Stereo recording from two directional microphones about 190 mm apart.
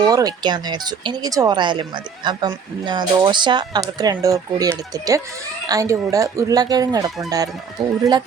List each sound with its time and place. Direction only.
0.1 s speech: 20° right (ahead or behind)
7.8 s speech: centre (ahead or behind)